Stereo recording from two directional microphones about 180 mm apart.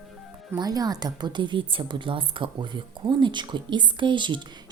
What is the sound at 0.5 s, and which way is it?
A woman's voice, 20° right (ahead or behind).